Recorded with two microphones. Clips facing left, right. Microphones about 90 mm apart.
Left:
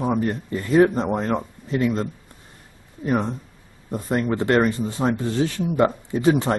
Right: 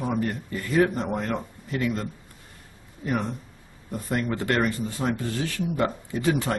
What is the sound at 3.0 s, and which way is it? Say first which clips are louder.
Speech: left 5 dB; 20° left (ahead or behind).